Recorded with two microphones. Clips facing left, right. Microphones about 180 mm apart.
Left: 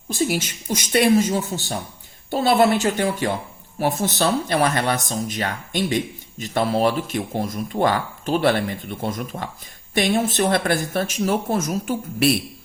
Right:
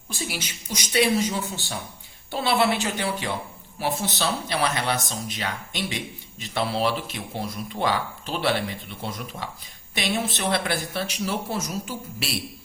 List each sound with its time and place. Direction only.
0.1 s speech: 45° left (ahead or behind)